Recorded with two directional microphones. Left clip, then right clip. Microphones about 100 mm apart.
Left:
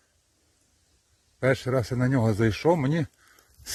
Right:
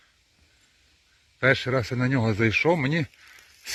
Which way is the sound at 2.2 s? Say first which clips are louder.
Right 3 dB; 35° left (ahead or behind).